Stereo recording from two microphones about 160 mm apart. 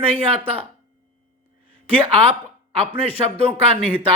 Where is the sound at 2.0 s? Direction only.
40° right (ahead or behind).